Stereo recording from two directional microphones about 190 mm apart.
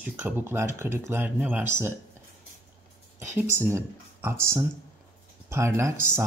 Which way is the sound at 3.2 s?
15° right (ahead or behind).